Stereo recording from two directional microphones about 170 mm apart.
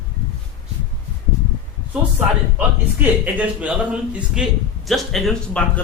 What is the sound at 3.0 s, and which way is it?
A man's voice, 10° right (ahead or behind).